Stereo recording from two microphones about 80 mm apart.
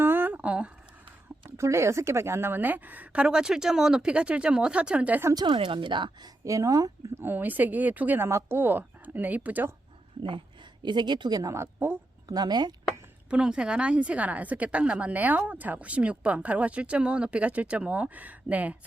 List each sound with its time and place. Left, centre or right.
0.0 s a sound: right
1.5 s a woman's voice: right; by 5.2 s centre
5.3 s a woman's voice: right
6.4 s speech: right
7.2 s speech: right
10.8 s a woman's voice: right
11.5 s a woman's voice: right
12.3 s speech: right
13.3 s a woman's voice: centre